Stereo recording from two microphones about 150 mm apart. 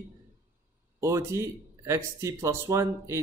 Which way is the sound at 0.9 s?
20° right (ahead or behind).